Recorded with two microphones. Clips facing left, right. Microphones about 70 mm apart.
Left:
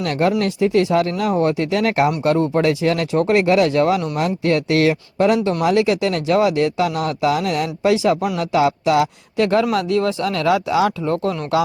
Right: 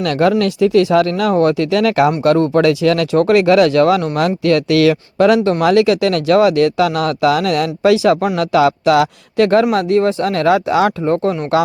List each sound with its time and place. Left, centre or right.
0.0 s a man's voice: right
9.7 s speech: right
11.1 s speech: right